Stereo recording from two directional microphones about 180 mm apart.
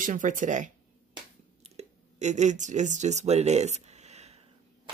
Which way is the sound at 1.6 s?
40° right (ahead or behind).